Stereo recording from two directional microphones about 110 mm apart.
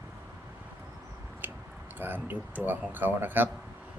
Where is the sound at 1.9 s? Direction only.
20° right (ahead or behind).